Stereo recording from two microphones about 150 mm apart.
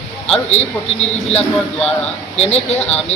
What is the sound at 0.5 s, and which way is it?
Speech, 45° left (ahead or behind).